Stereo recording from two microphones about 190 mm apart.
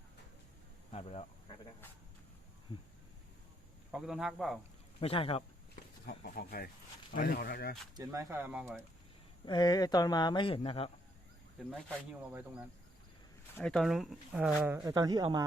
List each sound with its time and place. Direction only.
0.9 s speech: 30° left (ahead or behind)
3.9 s speech: centre (ahead or behind)
4.9 s speech: 30° left (ahead or behind)
6.1 s speech: 55° left (ahead or behind)
7.9 s speech: 20° right (ahead or behind)
9.5 s speech: 20° left (ahead or behind)
13.6 s speech: 5° left (ahead or behind)
14.8 s speech: 20° right (ahead or behind)